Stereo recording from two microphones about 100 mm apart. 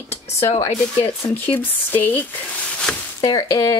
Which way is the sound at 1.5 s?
20° left (ahead or behind).